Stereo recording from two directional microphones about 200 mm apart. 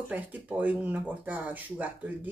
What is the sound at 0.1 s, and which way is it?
Speech, 10° right (ahead or behind).